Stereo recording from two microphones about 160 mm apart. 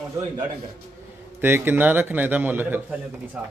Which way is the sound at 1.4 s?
15° right (ahead or behind).